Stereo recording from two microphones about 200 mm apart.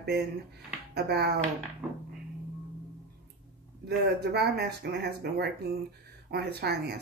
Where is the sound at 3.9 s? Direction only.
55° right (ahead or behind).